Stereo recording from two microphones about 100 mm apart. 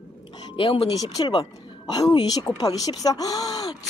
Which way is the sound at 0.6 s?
60° left (ahead or behind).